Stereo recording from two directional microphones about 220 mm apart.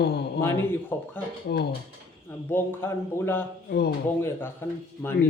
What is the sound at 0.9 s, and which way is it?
Speech, 10° left (ahead or behind).